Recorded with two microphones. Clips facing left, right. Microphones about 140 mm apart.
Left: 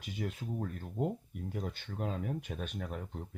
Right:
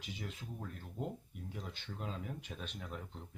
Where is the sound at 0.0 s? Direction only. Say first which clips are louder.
Left 7 dB; 50° left (ahead or behind).